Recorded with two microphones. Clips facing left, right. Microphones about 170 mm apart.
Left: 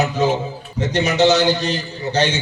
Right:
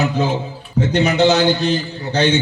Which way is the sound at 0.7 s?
55° right (ahead or behind).